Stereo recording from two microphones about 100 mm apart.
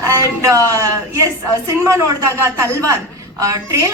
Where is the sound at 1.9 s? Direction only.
30° right (ahead or behind).